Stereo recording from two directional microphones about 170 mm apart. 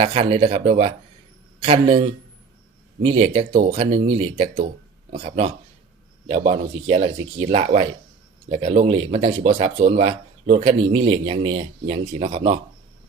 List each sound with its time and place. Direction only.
0.0 s speech: 35° right (ahead or behind)